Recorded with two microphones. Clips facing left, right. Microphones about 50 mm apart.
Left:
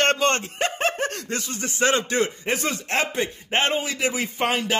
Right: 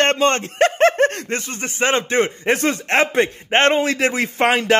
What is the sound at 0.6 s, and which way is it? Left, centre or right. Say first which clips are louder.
Speech: right 12 dB; right.